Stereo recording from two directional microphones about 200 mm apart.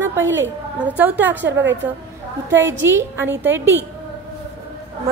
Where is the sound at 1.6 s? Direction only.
65° right (ahead or behind).